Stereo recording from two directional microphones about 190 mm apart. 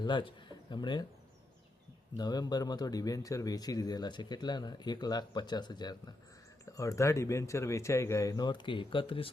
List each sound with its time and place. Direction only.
0.0 s a man's voice: 25° left (ahead or behind)
2.1 s speech: 20° left (ahead or behind)